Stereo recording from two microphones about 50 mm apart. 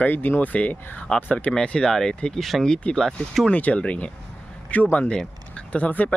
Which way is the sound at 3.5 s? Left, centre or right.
Left.